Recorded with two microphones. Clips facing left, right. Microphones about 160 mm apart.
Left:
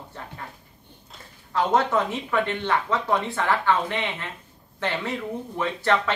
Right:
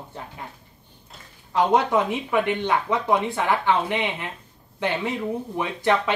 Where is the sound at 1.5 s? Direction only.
15° right (ahead or behind).